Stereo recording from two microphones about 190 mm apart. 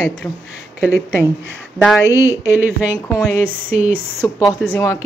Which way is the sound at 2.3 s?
10° right (ahead or behind).